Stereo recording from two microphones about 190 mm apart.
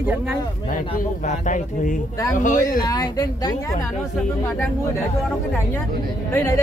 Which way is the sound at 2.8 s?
20° left (ahead or behind).